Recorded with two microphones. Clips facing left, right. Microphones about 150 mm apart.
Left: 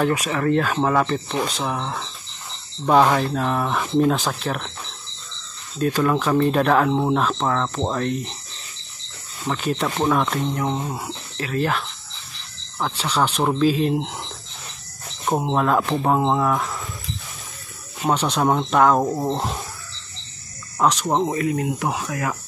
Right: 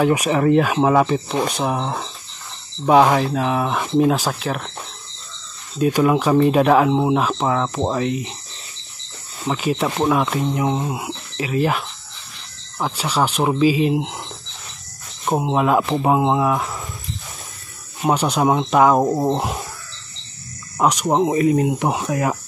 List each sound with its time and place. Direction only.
0.0 s speech: 20° right (ahead or behind)
1.6 s speech: 25° right (ahead or behind)
2.8 s speech: 10° right (ahead or behind)
5.8 s speech: 10° right (ahead or behind)
9.5 s speech: 10° right (ahead or behind)
15.2 s speech: 5° right (ahead or behind)
18.0 s speech: 10° right (ahead or behind)
20.8 s speech: 10° right (ahead or behind)